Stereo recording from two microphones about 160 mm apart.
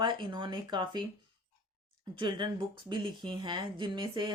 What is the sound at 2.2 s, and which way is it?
Speech, 30° right (ahead or behind).